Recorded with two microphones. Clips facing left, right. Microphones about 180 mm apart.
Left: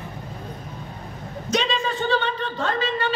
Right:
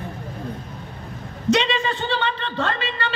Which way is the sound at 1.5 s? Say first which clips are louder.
Right 4 dB; 70° right (ahead or behind).